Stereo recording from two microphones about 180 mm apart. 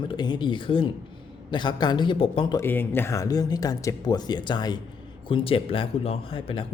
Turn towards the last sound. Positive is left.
turn(degrees=30)  # may be behind; listen again after turning